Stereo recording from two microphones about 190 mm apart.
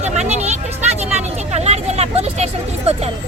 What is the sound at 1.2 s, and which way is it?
Vehicle, 35° right (ahead or behind).